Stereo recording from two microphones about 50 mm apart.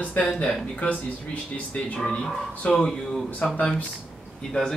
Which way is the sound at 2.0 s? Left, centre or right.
Centre.